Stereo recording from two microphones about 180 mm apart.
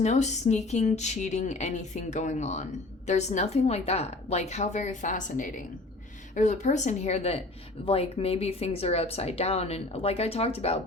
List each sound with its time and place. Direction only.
0.0 s speech: 40° left (ahead or behind)